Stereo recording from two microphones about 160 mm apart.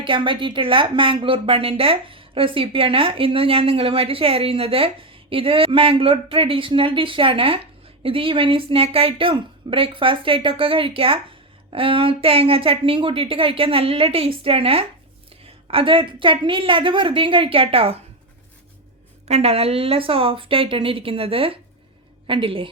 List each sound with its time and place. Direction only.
0.0 s a woman's voice: 30° right (ahead or behind)
19.3 s a woman's voice: 40° right (ahead or behind)